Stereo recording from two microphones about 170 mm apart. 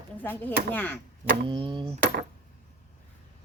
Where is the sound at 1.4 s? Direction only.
30° right (ahead or behind).